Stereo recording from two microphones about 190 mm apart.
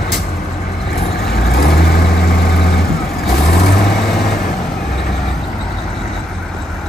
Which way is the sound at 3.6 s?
Centre (ahead or behind).